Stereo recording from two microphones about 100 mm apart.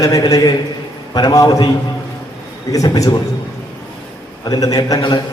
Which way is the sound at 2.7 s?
35° left (ahead or behind).